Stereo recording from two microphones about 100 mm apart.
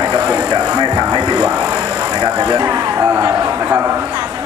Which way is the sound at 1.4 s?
10° right (ahead or behind).